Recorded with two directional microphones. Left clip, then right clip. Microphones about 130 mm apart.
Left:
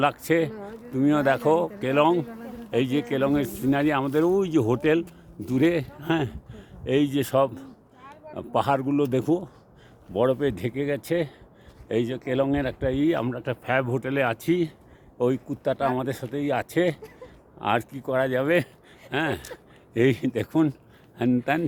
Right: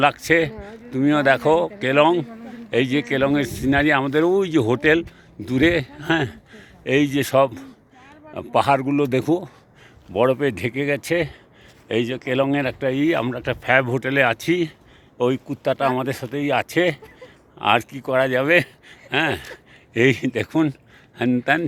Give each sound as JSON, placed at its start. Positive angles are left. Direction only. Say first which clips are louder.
{"t": 0.0, "sound": "speech", "louder": "right 5 dB", "side_deg": -5}
{"t": 6.6, "sound": "a man's voice", "louder": "right 4 dB", "side_deg": -25}
{"t": 15.2, "sound": "speech", "louder": "right 4 dB", "side_deg": -20}